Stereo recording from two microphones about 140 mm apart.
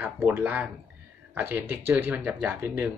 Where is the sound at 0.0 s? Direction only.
15° right (ahead or behind).